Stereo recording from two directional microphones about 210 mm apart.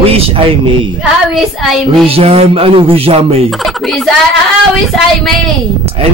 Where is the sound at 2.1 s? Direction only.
25° right (ahead or behind).